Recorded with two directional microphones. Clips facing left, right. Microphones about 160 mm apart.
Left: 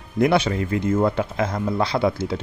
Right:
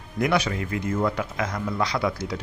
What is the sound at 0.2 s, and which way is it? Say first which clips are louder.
Speech: left 5 dB; 30° left (ahead or behind).